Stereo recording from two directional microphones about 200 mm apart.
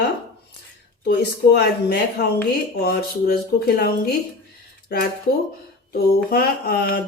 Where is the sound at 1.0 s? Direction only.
55° left (ahead or behind).